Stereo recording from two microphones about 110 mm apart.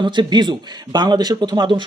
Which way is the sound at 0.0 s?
45° right (ahead or behind).